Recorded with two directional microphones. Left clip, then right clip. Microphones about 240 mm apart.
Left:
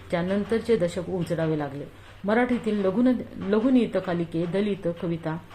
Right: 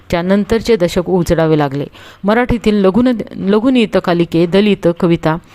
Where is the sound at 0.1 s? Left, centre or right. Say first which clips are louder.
Right 12 dB; right.